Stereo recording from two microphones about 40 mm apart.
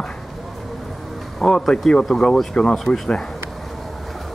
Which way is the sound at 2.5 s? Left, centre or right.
Left.